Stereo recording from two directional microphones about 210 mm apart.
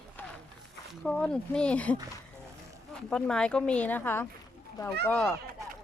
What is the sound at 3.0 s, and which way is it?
Speech, 5° left (ahead or behind).